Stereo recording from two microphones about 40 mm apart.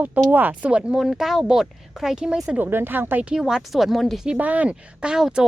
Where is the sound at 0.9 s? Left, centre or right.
Centre.